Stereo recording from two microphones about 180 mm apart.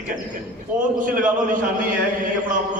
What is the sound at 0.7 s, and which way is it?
Speech, 50° right (ahead or behind).